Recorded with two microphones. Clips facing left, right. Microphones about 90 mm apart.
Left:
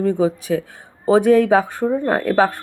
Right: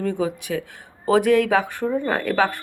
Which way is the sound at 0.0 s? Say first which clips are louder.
Left 6 dB; 25° left (ahead or behind).